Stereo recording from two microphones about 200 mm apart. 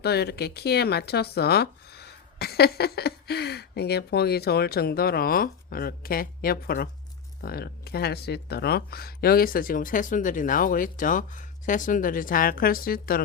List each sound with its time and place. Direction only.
0.0 s speech: 55° left (ahead or behind)